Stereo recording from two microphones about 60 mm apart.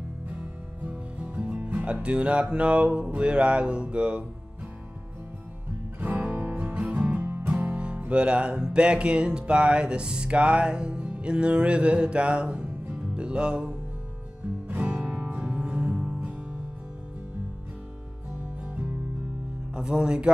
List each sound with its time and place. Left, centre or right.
0.8 s music: right
5.9 s music: right
19.7 s music: centre